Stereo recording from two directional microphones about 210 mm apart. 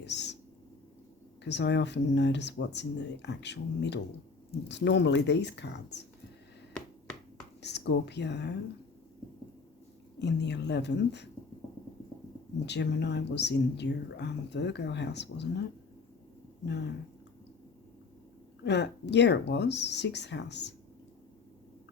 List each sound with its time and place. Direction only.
0.0 s a sound: 55° left (ahead or behind)
1.5 s speech: 55° left (ahead or behind)
7.6 s speech: 55° left (ahead or behind)
10.2 s speech: 55° left (ahead or behind)
12.6 s speech: 55° left (ahead or behind)
16.6 s speech: 55° left (ahead or behind)
18.6 s speech: 55° left (ahead or behind)